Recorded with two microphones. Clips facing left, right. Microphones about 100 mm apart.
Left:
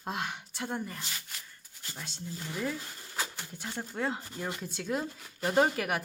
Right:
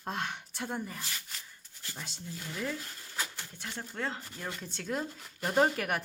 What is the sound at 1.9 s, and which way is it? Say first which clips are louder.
Speech: even; 5° right (ahead or behind).